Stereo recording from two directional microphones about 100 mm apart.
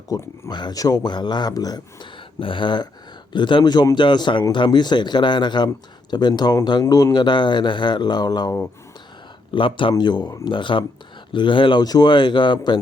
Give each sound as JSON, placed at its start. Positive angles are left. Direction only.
{"t": 0.1, "sound": "speech", "side_deg": 30}
{"t": 0.5, "sound": "speech", "side_deg": 45}
{"t": 2.4, "sound": "speech", "side_deg": 55}
{"t": 9.5, "sound": "speech", "side_deg": 60}
{"t": 10.0, "sound": "speech", "side_deg": 50}